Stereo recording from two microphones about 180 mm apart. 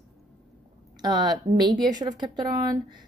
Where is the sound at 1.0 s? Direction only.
25° right (ahead or behind).